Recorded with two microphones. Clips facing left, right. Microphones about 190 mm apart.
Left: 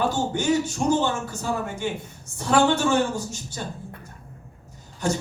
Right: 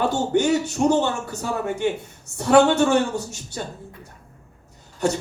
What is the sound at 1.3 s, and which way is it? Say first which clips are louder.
A man's voice: right 2 dB; 65° right (ahead or behind).